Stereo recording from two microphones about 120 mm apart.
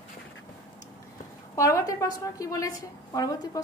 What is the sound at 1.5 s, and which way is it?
A woman's voice, 25° left (ahead or behind).